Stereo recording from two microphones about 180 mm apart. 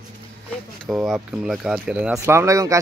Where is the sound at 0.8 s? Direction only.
Centre (ahead or behind).